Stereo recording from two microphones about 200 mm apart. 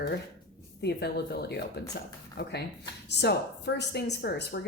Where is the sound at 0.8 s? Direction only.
55° left (ahead or behind).